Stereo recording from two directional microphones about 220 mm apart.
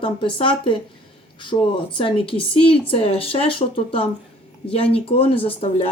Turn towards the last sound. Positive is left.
turn(degrees=25)  # may be behind; listen again after turning